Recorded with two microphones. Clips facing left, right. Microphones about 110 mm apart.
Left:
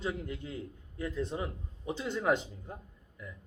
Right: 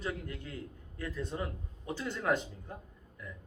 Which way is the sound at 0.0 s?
20° left (ahead or behind).